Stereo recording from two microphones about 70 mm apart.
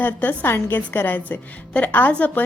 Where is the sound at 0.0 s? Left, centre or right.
Left.